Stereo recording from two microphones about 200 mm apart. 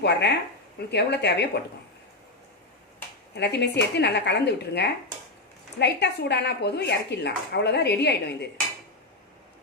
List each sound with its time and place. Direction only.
0.0 s speech: 55° left (ahead or behind)
3.3 s speech: 55° left (ahead or behind)